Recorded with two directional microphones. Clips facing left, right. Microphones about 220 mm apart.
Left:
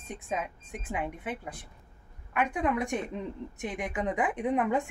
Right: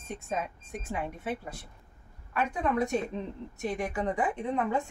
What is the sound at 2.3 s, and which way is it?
Speech, 15° left (ahead or behind).